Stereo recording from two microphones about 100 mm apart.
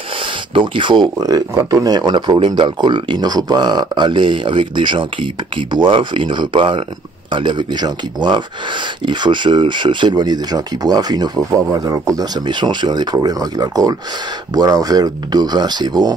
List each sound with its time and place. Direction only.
0.2 s speech: 55° right (ahead or behind)